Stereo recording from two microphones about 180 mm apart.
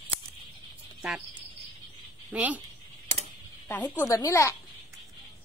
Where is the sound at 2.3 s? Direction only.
10° right (ahead or behind).